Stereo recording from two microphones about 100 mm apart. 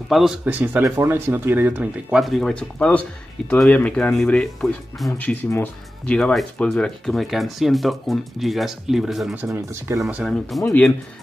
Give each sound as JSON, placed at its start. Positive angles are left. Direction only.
{"t": 0.1, "sound": "speech", "side_deg": -5}
{"t": 0.5, "sound": "speech", "side_deg": -15}
{"t": 0.8, "sound": "speech", "side_deg": -25}
{"t": 2.1, "sound": "speech", "side_deg": 0}
{"t": 5.1, "sound": "speech", "side_deg": 15}
{"t": 9.5, "sound": "speech", "side_deg": -30}
{"t": 10.2, "sound": "speech", "side_deg": 0}